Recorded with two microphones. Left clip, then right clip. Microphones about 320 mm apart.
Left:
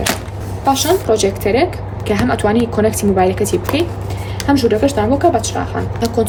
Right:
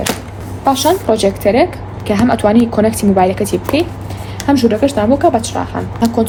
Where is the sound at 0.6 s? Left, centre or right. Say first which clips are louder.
Right 2 dB; centre.